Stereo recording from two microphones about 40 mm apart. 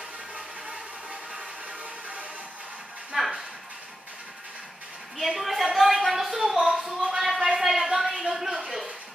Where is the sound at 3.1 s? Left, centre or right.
Centre.